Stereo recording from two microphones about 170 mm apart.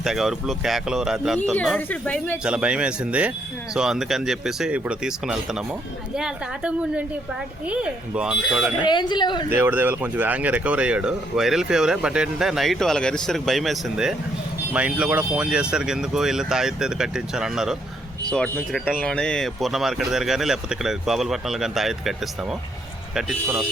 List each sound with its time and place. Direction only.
0.0 s speech: 5° right (ahead or behind)
2.4 s speech: 5° right (ahead or behind)
8.9 s speech: 25° left (ahead or behind)
9.5 s speech: 10° right (ahead or behind)
18.3 s speech: 5° left (ahead or behind)
23.1 s speech: 10° right (ahead or behind)